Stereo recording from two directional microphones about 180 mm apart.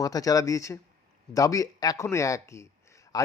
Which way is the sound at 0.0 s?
20° left (ahead or behind).